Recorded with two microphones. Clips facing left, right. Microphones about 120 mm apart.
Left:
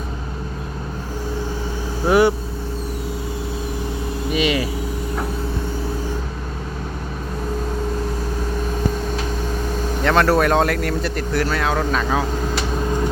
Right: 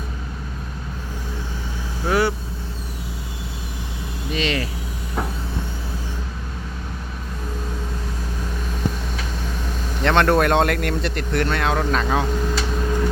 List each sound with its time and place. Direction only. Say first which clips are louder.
2.0 s speech: left 5 dB; 15° left (ahead or behind)
4.3 s vehicle: left 4 dB; 10° left (ahead or behind)
10.0 s speech: left 1 dB; centre (ahead or behind)